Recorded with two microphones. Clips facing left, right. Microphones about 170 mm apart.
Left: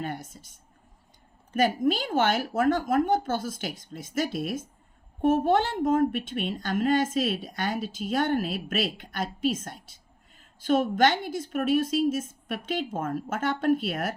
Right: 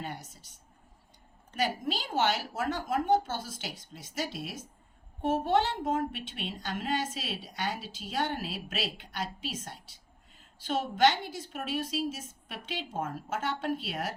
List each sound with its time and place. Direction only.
0.0 s a woman's voice: 50° left (ahead or behind)
1.5 s a woman's voice: 50° left (ahead or behind)